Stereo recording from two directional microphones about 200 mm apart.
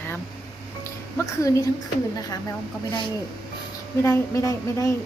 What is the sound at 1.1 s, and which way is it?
Speech, 15° left (ahead or behind).